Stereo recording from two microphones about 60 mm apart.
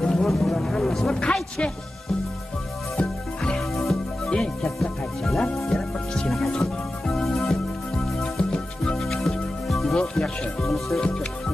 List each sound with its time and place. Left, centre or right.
0.0 s music: centre
3.0 s music: centre